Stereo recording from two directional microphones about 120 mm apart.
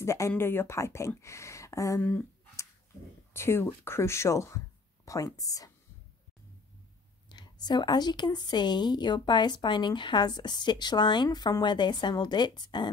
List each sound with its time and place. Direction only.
0.0 s speech: 25° left (ahead or behind)
2.0 s speech: 15° left (ahead or behind)
3.3 s speech: 20° left (ahead or behind)
7.2 s speech: 35° left (ahead or behind)